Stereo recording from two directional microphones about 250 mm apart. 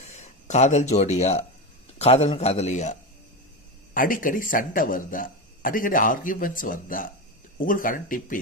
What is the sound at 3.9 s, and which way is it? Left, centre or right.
Speech, left.